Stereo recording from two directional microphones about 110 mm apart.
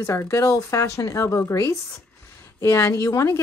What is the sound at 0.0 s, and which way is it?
A woman's voice, 25° left (ahead or behind).